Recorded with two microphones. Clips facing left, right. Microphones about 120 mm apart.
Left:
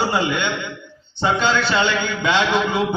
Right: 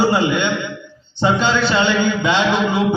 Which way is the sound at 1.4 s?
15° right (ahead or behind).